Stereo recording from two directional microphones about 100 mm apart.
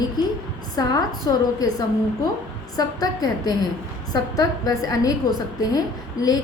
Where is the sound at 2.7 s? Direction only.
40° left (ahead or behind).